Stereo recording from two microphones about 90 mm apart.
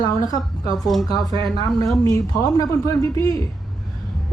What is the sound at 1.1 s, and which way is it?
Speech, 40° left (ahead or behind).